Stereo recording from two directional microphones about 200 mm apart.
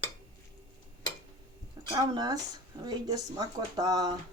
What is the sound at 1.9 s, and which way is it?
Speech, 20° right (ahead or behind).